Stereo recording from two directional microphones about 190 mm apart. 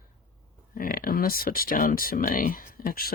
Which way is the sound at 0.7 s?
50° left (ahead or behind).